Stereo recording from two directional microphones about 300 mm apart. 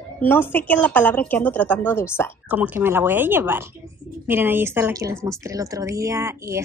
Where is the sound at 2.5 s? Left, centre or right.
Centre.